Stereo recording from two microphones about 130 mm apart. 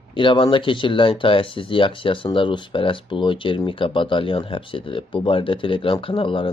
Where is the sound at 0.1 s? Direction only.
40° left (ahead or behind).